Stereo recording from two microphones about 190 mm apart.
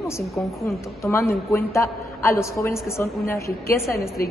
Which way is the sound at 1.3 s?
15° left (ahead or behind).